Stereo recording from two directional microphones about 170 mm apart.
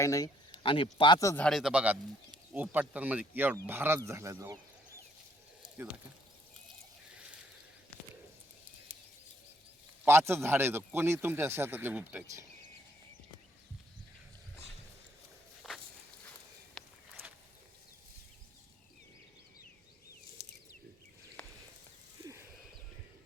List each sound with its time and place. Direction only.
0.0 s speech: 20° left (ahead or behind)
0.6 s speech: 30° left (ahead or behind)
1.5 s a man's voice: centre (ahead or behind); by 4.5 s 15° right (ahead or behind)
10.0 s a man's voice: 15° right (ahead or behind)
15.6 s walk: centre (ahead or behind)
22.2 s a sound: 20° right (ahead or behind)